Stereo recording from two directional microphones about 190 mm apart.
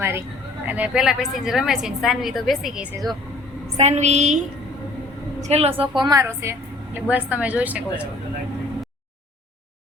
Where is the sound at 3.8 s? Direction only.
35° right (ahead or behind); by 8.0 s 5° right (ahead or behind).